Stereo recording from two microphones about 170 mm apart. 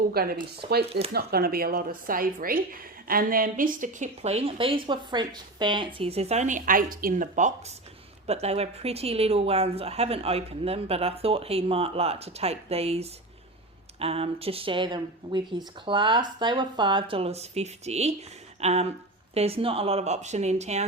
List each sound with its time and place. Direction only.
0.1 s speech: 65° right (ahead or behind)
0.9 s a woman's voice: 35° right (ahead or behind)
1.1 s speech: 65° right (ahead or behind); by 7.5 s 50° right (ahead or behind)
8.3 s a woman's voice: 40° right (ahead or behind)